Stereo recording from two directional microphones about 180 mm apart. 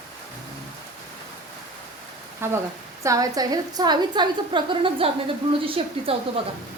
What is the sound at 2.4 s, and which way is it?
Frying, 15° right (ahead or behind).